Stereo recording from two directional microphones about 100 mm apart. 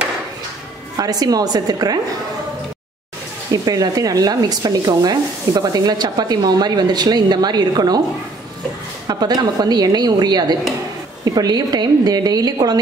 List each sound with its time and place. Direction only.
0.9 s speech: 40° right (ahead or behind)
3.5 s speech: 40° right (ahead or behind)
9.0 s speech: 40° right (ahead or behind)